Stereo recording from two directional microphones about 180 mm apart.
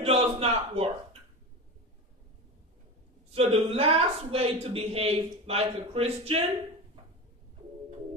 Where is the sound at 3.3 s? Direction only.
35° right (ahead or behind).